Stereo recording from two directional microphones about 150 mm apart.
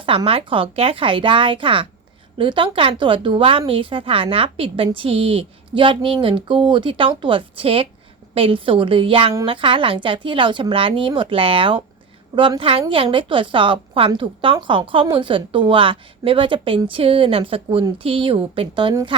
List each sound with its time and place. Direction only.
0.0 s a woman's voice: 35° right (ahead or behind)